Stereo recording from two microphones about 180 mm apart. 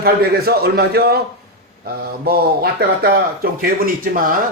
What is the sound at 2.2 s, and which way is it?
A man's voice, 60° right (ahead or behind).